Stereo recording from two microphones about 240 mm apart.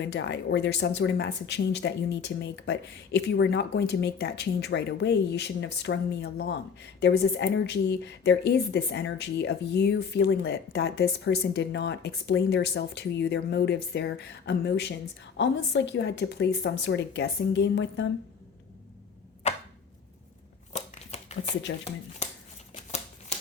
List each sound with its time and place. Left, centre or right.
0.0 s a woman's voice: left
20.7 s shuffling cards: left